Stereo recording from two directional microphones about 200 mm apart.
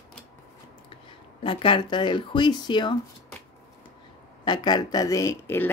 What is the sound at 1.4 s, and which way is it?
A woman's voice, 25° left (ahead or behind).